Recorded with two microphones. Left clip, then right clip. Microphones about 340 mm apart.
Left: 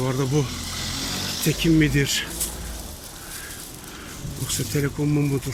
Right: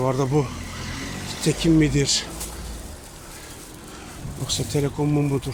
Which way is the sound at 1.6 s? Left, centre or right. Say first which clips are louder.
Even; centre.